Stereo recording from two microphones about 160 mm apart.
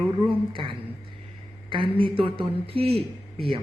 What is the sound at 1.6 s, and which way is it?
Speech, 35° right (ahead or behind).